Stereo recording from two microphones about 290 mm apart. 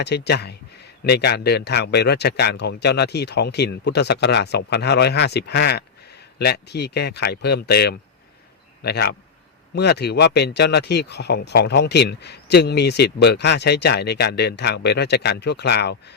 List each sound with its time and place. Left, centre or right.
0.0 s speech: left